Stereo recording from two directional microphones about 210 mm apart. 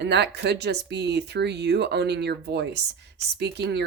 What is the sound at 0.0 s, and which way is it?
Speech, 55° right (ahead or behind).